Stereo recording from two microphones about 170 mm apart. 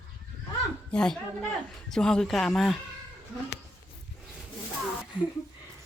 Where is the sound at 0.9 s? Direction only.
5° left (ahead or behind).